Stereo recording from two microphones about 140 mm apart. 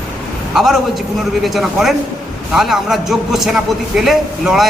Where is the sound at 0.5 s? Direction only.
5° right (ahead or behind).